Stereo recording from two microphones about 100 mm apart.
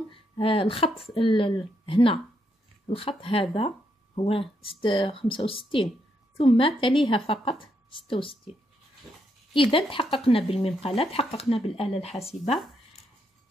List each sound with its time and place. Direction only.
0.1 s a woman's voice: 65° left (ahead or behind)
3.5 s a sound: 60° left (ahead or behind)
4.3 s a woman's voice: 65° left (ahead or behind)
9.5 s a woman's voice: 60° left (ahead or behind); by 11.9 s 75° left (ahead or behind)
12.0 s a woman's voice: 85° left